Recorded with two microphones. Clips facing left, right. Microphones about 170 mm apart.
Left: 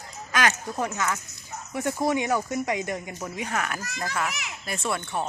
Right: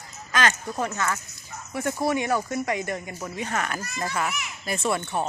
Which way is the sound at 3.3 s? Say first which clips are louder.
Right 1 dB; 5° left (ahead or behind).